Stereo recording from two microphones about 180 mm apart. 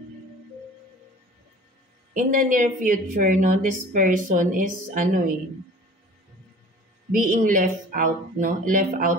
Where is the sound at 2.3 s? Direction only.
50° right (ahead or behind).